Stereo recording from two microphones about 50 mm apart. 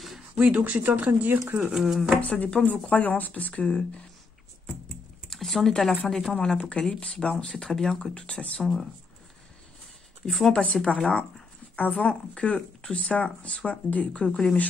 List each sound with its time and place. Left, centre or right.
0.6 s speech: right
1.6 s speech: centre
2.2 s speech: left
5.3 s a sound: centre
5.7 s a woman's voice: centre
10.2 s speech: centre
10.5 s speech: centre